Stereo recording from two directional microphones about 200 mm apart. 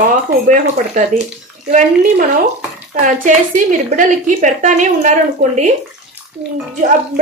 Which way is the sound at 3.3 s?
40° right (ahead or behind).